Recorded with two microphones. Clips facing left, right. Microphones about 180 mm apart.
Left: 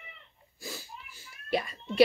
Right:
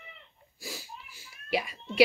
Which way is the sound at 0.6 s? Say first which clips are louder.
Even; 10° right (ahead or behind).